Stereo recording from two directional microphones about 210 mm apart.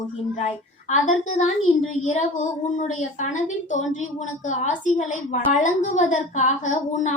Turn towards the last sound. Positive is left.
turn(degrees=35)  # may be behind; listen again after turning